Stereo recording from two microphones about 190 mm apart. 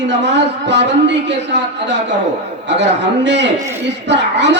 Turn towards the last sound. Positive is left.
turn(degrees=-65)  # may be behind; listen again after turning